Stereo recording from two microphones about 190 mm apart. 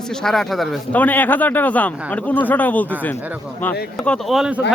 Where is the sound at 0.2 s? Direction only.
Centre (ahead or behind).